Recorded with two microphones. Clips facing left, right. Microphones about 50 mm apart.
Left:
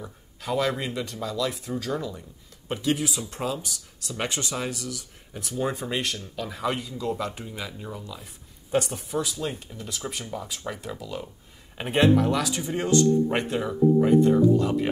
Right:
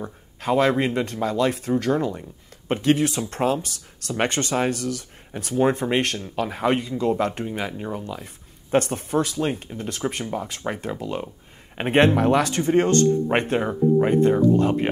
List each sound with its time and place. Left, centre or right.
0.0 s speech: right